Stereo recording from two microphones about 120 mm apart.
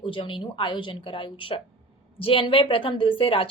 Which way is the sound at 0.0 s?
45° left (ahead or behind).